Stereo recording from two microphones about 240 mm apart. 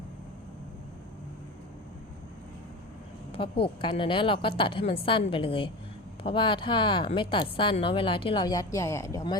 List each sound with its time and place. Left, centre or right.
3.3 s a woman's voice: left